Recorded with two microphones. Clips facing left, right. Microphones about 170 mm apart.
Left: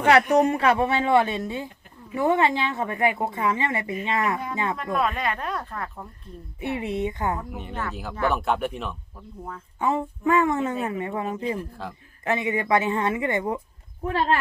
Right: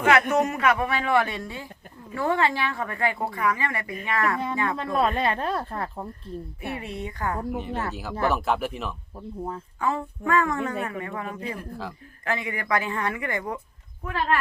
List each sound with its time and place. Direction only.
0.0 s speech: 35° left (ahead or behind)
4.8 s speech: 30° right (ahead or behind)
6.6 s speech: 20° left (ahead or behind)
7.5 s speech: centre (ahead or behind)
9.1 s speech: 30° right (ahead or behind)
9.8 s speech: 20° left (ahead or behind)